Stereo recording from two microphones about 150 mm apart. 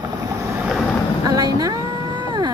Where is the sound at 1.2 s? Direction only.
25° right (ahead or behind).